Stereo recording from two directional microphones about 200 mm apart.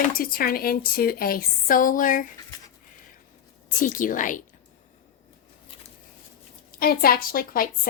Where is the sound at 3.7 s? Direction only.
40° left (ahead or behind).